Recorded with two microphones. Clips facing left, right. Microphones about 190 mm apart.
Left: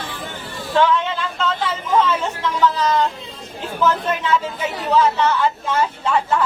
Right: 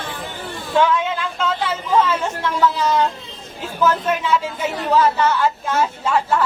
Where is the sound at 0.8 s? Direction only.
5° right (ahead or behind).